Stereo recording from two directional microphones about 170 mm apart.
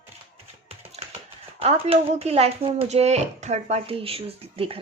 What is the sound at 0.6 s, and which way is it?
Tap, 35° right (ahead or behind).